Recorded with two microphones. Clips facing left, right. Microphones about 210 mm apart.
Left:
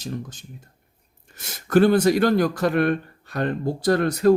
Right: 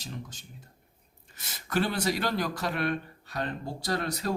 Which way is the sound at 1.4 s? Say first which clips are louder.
Left 12 dB; 50° left (ahead or behind).